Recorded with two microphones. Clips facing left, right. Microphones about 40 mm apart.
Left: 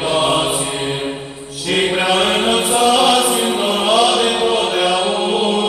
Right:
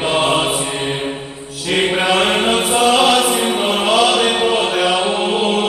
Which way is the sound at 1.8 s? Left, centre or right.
Right.